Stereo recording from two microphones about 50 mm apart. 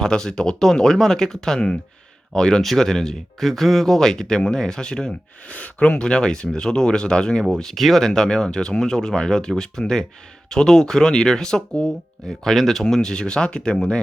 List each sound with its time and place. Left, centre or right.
0.0 s speech: centre
5.5 s speech: left
6.0 s speech: centre